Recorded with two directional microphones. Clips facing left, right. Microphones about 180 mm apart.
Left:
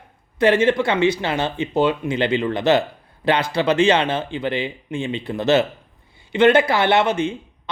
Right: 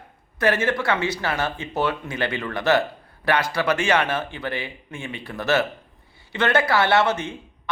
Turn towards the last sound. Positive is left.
turn(degrees=15)  # may be behind; listen again after turning